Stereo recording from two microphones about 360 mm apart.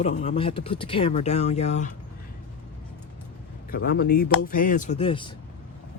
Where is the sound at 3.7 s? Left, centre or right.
Left.